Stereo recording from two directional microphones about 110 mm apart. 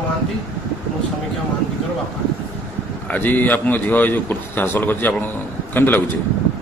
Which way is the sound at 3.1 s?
15° left (ahead or behind).